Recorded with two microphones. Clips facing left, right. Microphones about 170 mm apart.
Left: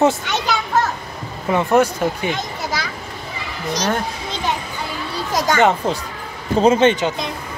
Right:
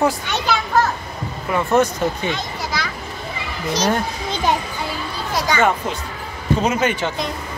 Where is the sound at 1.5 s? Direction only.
15° left (ahead or behind).